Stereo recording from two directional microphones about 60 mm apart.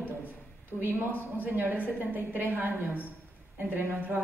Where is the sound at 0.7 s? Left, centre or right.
Right.